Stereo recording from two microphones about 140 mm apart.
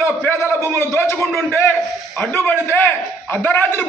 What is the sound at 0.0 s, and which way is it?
A man's voice, 15° left (ahead or behind).